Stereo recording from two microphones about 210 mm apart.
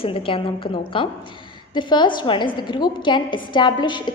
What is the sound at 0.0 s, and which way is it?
A woman's voice, 25° left (ahead or behind).